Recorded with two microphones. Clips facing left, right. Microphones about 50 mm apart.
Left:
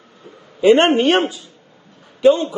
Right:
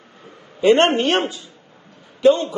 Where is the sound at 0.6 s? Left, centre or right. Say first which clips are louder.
Left 2 dB; centre.